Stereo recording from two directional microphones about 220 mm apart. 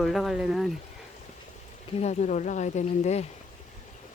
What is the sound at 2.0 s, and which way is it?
Speech, 30° left (ahead or behind).